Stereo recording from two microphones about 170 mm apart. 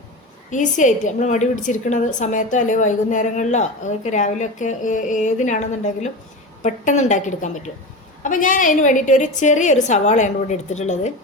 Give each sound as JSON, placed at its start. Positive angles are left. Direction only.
{"t": 0.5, "sound": "a woman's voice", "side_deg": 45}